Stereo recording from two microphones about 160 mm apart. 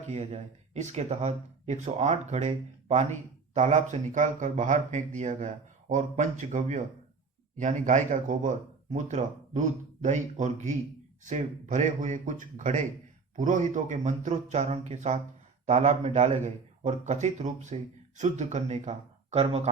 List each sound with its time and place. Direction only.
0.1 s speech: 45° right (ahead or behind)